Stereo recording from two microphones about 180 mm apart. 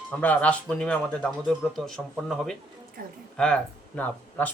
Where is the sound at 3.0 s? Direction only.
55° right (ahead or behind).